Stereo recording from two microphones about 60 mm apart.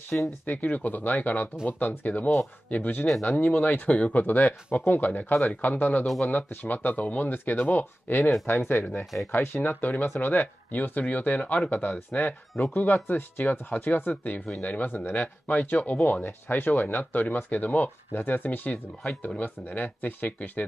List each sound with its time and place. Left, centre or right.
0.1 s speech: left
3.1 s speech: centre
3.3 s speech: left